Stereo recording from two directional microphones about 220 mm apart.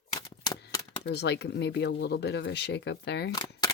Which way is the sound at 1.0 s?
50° left (ahead or behind).